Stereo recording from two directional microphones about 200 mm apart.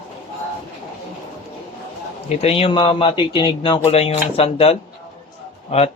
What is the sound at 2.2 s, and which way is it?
Speech, 30° left (ahead or behind).